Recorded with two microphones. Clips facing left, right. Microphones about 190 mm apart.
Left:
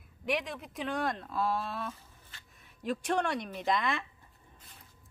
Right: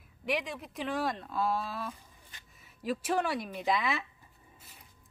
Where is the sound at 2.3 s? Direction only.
15° right (ahead or behind).